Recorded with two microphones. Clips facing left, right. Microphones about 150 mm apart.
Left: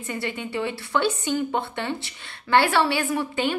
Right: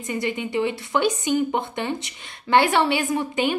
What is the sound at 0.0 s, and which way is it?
A woman's voice, 15° right (ahead or behind).